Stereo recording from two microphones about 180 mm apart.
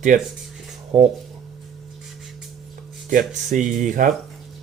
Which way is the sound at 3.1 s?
45° right (ahead or behind).